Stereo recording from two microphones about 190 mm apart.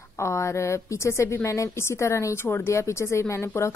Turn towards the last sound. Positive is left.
turn(degrees=15)  # may be behind; listen again after turning